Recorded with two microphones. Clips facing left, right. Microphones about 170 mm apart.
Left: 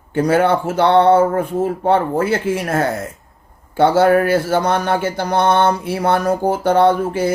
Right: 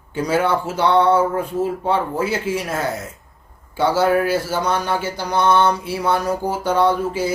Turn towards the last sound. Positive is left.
turn(degrees=55)  # may be behind; listen again after turning